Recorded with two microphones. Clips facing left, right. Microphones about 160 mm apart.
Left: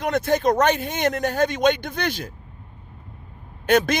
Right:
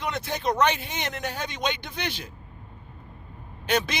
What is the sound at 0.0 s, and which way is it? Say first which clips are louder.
A man's voice: left 8 dB; 45° left (ahead or behind).